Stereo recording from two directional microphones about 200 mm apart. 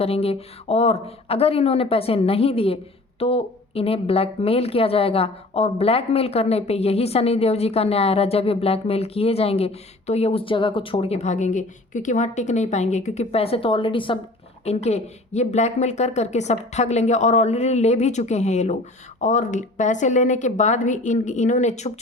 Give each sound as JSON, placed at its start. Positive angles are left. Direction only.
{"t": 0.0, "sound": "a woman's voice", "side_deg": 30}